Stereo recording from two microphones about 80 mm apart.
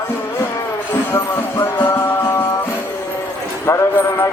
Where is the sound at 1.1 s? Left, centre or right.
Left.